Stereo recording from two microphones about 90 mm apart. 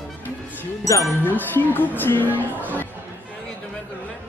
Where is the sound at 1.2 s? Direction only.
20° left (ahead or behind).